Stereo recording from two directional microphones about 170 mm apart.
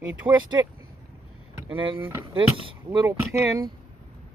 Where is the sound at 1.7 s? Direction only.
30° right (ahead or behind).